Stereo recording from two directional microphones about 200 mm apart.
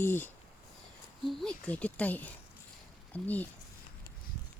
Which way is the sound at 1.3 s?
Centre (ahead or behind).